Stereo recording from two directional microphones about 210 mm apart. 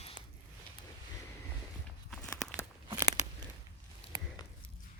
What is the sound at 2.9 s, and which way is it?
Crunch, 20° right (ahead or behind).